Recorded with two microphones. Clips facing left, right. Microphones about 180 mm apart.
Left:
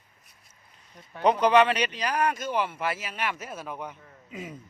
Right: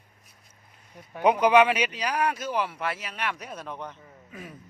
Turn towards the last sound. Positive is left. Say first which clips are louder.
# left 4 dB
turn(degrees=20)  # may be behind; listen again after turning